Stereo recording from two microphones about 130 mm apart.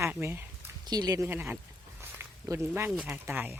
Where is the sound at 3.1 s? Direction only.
15° right (ahead or behind).